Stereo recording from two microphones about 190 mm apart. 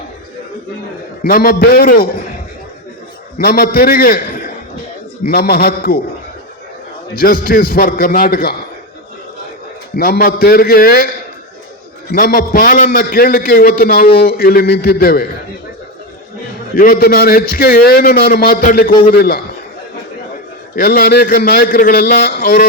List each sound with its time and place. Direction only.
1.2 s a man's voice: 50° left (ahead or behind)
3.3 s a man's voice: 50° left (ahead or behind)
7.2 s a man's voice: 50° left (ahead or behind)
10.0 s a man's voice: 55° left (ahead or behind)
12.1 s a man's voice: 50° left (ahead or behind)
16.7 s a man's voice: 50° left (ahead or behind)
20.7 s a man's voice: 50° left (ahead or behind)